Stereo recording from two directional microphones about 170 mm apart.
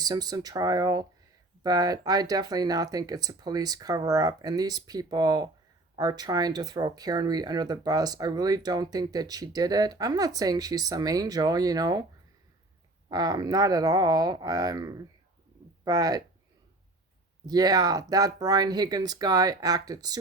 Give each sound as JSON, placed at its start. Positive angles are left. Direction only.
{"t": 0.0, "sound": "speech", "side_deg": -20}
{"t": 13.1, "sound": "speech", "side_deg": -25}
{"t": 17.4, "sound": "speech", "side_deg": -25}